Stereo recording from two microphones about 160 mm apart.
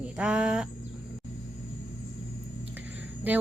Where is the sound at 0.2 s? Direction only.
5° right (ahead or behind).